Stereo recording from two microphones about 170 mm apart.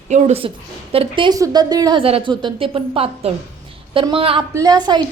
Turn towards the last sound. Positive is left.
turn(degrees=-25)  # may be behind; listen again after turning